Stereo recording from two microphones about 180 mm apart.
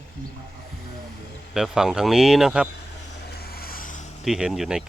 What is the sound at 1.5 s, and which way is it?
Speech, 5° right (ahead or behind).